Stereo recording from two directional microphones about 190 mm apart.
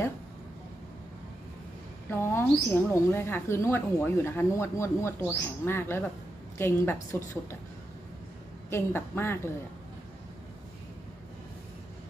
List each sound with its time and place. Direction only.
2.0 s speech: 10° left (ahead or behind)
8.6 s speech: 10° left (ahead or behind)